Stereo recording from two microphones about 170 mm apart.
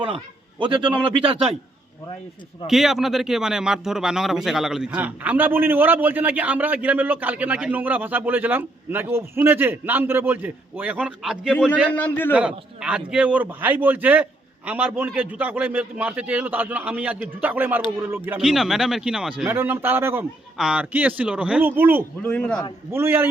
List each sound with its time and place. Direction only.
0.6 s a man's voice: 30° right (ahead or behind)
2.6 s speech: centre (ahead or behind)
11.9 s a man's voice: 10° left (ahead or behind)
12.3 s speech: 5° right (ahead or behind)
22.2 s a man's voice: 5° left (ahead or behind)
22.9 s speech: 15° right (ahead or behind)